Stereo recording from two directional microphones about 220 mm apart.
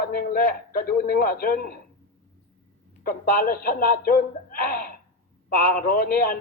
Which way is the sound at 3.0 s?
40° left (ahead or behind).